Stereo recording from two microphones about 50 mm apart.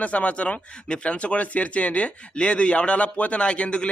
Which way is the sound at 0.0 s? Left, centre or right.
Left.